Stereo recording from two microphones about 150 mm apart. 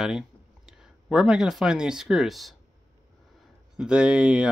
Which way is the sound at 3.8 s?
5° right (ahead or behind).